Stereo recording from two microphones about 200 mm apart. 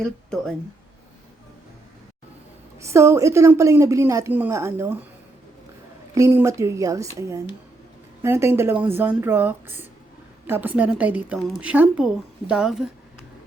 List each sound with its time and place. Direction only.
0.0 s speech: 5° left (ahead or behind)
2.8 s a woman's voice: 15° right (ahead or behind)
6.1 s a woman's voice: 15° right (ahead or behind)